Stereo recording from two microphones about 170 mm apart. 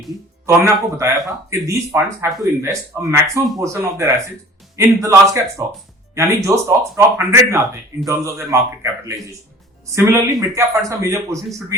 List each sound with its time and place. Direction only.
0.4 s a man's voice: 15° right (ahead or behind)
10.5 s a man's voice: 20° right (ahead or behind)